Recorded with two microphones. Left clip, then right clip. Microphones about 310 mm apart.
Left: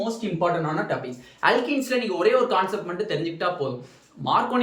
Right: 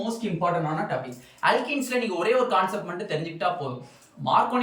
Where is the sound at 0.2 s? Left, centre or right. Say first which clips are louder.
Left 1 dB; centre.